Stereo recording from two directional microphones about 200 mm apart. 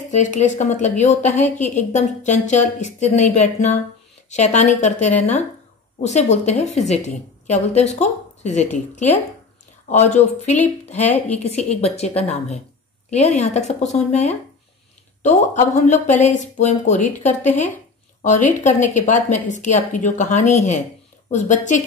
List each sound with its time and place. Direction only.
0.1 s a woman's voice: 35° left (ahead or behind)
9.8 s a woman's voice: 35° left (ahead or behind)